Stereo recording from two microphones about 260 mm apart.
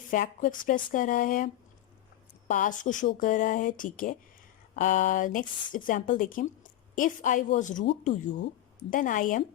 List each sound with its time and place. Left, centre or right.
0.1 s speech: left
2.5 s a woman's voice: left
8.9 s speech: left